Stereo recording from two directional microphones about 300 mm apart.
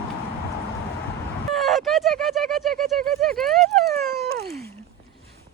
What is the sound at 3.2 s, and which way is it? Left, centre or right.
Speech, centre.